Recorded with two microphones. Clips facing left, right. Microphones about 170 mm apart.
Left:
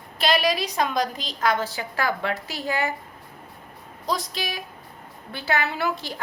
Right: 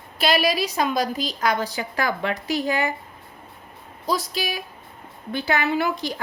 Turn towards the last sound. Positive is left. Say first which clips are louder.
# right 4 dB
turn(degrees=-15)  # may be behind; listen again after turning